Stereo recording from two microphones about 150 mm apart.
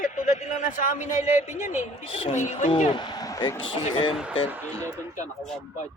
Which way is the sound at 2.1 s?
40° left (ahead or behind).